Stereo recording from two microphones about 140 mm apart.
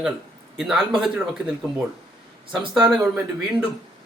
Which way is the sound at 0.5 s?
5° right (ahead or behind).